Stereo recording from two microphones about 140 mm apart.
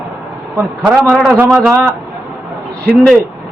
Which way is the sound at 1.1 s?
Centre (ahead or behind).